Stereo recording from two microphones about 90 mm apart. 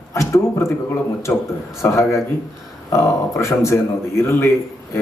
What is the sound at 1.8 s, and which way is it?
A man's voice, 35° left (ahead or behind).